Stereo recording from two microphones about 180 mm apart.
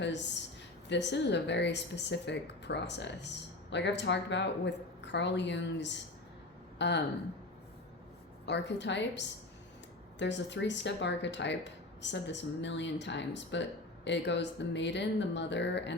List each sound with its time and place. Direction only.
0.0 s speech: 80° left
8.4 s speech: 75° left (ahead or behind)